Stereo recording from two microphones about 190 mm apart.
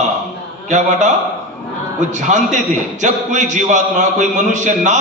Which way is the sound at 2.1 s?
40° right (ahead or behind).